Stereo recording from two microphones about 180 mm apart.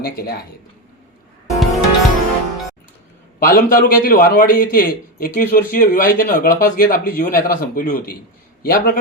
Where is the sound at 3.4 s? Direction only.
55° left (ahead or behind).